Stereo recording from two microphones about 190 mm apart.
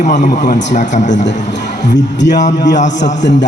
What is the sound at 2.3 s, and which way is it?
A man's voice, 40° left (ahead or behind).